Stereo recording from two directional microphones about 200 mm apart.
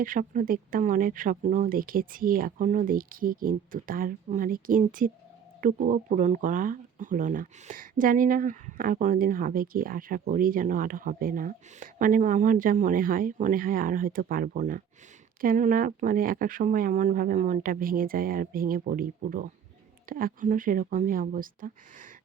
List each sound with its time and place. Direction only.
0.0 s speech: 45° right (ahead or behind)